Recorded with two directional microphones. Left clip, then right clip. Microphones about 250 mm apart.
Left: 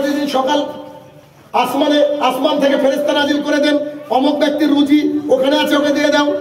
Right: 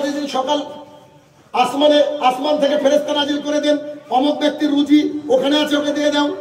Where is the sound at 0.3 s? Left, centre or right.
Right.